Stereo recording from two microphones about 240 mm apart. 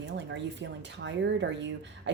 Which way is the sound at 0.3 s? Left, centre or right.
Right.